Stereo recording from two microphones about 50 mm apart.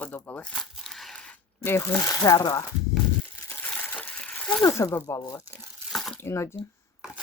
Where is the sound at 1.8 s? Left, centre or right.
Left.